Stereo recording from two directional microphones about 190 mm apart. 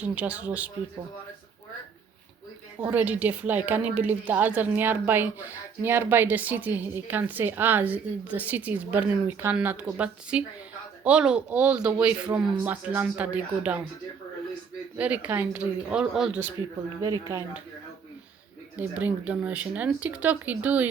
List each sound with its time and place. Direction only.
0.0 s a woman's voice: 5° right (ahead or behind)
2.8 s a woman's voice: 5° right (ahead or behind)
14.9 s a woman's voice: 5° right (ahead or behind)
17.0 s a woman's voice: 15° right (ahead or behind)
18.8 s a woman's voice: 10° right (ahead or behind)